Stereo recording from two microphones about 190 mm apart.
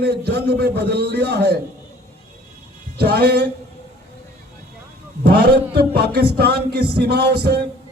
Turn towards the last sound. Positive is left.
turn(degrees=-55)  # may be behind; listen again after turning